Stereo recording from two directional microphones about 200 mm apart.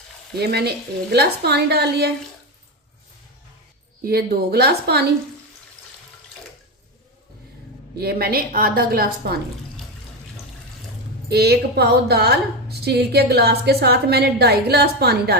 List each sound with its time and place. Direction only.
0.3 s a woman's voice: 55° right (ahead or behind)
4.0 s a woman's voice: 50° right (ahead or behind)
7.9 s a woman's voice: 50° right (ahead or behind)
11.3 s a woman's voice: 55° right (ahead or behind)